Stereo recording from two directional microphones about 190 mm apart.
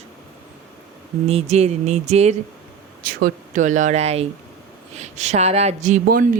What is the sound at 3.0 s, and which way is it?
Speech, 50° right (ahead or behind).